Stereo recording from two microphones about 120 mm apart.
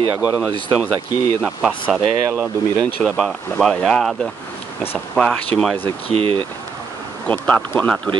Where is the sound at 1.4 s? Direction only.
Centre (ahead or behind).